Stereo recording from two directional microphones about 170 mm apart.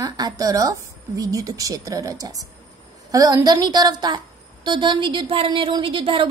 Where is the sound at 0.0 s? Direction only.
20° right (ahead or behind).